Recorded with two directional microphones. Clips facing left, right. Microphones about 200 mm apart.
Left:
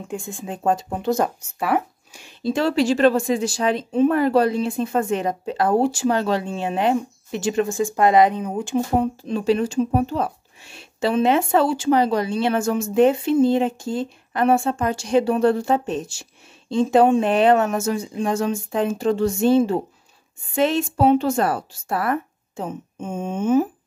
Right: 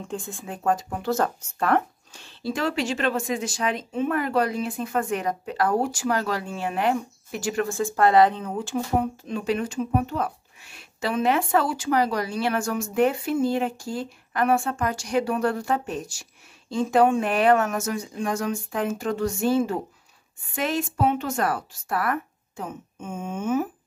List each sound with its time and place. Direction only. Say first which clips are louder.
0.1 s speech: left 5 dB; 15° left (ahead or behind)
2.5 s speech: left 7 dB; 35° left (ahead or behind); by 8.8 s 15° left (ahead or behind)
9.3 s speech: left 7 dB; 30° left (ahead or behind)